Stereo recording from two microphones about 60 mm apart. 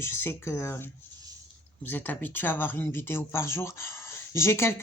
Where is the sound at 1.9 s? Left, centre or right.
Left.